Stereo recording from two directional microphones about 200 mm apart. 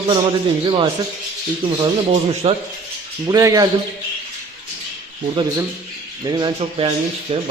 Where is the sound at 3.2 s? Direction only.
15° right (ahead or behind).